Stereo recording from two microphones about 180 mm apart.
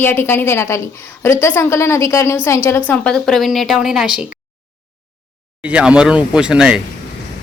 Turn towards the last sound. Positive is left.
turn(degrees=-5)  # may be behind; listen again after turning